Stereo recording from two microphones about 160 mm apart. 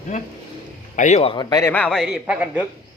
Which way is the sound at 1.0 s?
45° left (ahead or behind).